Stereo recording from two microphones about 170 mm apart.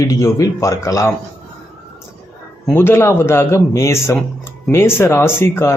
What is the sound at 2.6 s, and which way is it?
Speech, 10° left (ahead or behind).